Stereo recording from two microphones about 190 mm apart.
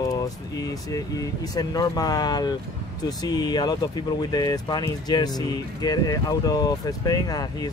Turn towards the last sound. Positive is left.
turn(degrees=20)  # may be behind; listen again after turning